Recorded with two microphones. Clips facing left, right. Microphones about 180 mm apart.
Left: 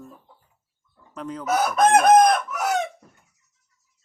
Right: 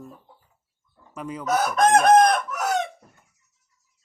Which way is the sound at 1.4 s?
5° left (ahead or behind).